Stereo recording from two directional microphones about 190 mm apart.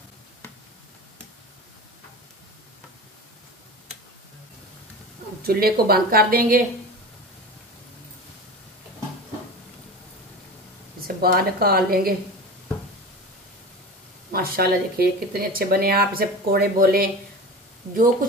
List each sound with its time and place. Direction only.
5.4 s speech: 55° right (ahead or behind)
11.0 s speech: 50° right (ahead or behind)
14.3 s speech: 50° right (ahead or behind)